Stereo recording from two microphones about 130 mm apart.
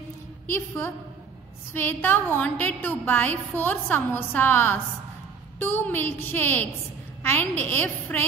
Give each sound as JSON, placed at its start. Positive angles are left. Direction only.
{"t": 0.5, "sound": "a woman's voice", "side_deg": 20}